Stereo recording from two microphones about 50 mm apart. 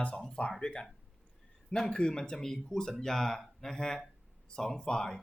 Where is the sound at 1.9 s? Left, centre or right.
Centre.